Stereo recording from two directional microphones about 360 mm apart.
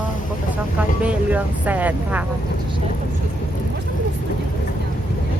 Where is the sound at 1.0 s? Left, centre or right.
Centre.